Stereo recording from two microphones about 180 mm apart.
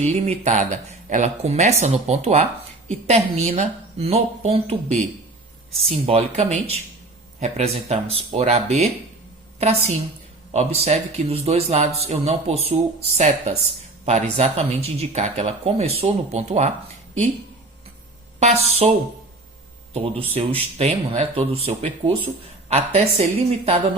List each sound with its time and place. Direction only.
0.0 s speech: 40° right (ahead or behind)
18.3 s speech: 40° right (ahead or behind)